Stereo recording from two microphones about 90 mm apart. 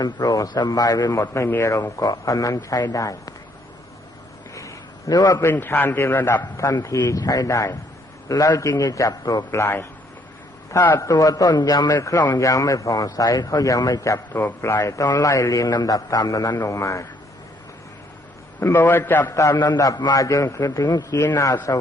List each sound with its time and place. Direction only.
0.0 s a man's voice: 45° left (ahead or behind)
1.1 s a man's voice: 30° left (ahead or behind)
4.5 s a sound: 40° left (ahead or behind)
5.4 s a man's voice: 25° left (ahead or behind)
7.1 s a man's voice: 45° left (ahead or behind)
9.5 s a man's voice: 30° left (ahead or behind)
11.1 s a man's voice: 40° left (ahead or behind)
11.9 s a man's voice: 35° left (ahead or behind)
14.3 s a man's voice: 25° left (ahead or behind)
14.8 s a man's voice: 40° left (ahead or behind)
18.6 s a man's voice: 25° left (ahead or behind)
19.3 s a man's voice: 35° left (ahead or behind)
20.7 s a man's voice: 50° left (ahead or behind)
21.3 s a man's voice: 35° left (ahead or behind)